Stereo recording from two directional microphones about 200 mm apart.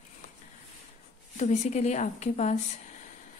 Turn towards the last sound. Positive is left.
turn(degrees=35)  # may be behind; listen again after turning